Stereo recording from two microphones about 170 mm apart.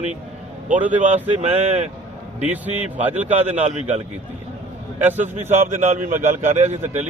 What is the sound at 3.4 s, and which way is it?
Speech, 45° right (ahead or behind).